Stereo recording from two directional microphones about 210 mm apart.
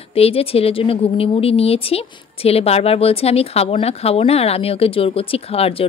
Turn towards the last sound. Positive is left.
turn(degrees=25)  # may be behind; listen again after turning